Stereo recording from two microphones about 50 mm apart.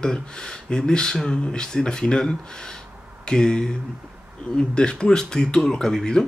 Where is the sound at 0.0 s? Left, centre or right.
Centre.